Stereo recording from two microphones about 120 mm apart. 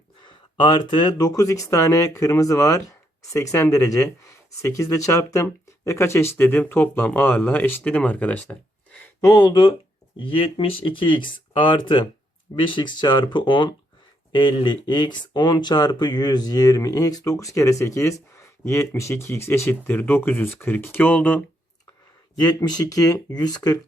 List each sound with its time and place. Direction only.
0.3 s speech: 40° left (ahead or behind); by 9.0 s 10° left (ahead or behind)
9.2 s speech: 35° left (ahead or behind); by 21.4 s 15° left (ahead or behind)
22.4 s speech: 35° left (ahead or behind)